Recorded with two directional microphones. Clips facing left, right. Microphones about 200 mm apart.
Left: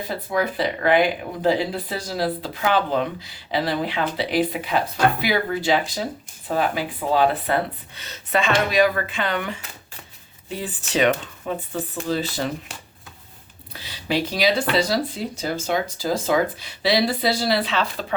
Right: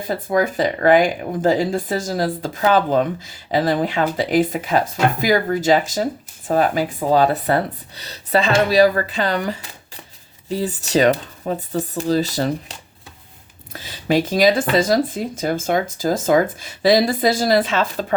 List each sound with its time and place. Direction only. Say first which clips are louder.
0.1 s speech: right 6 dB; 45° right (ahead or behind)
13.7 s speech: right 6 dB; 45° right (ahead or behind)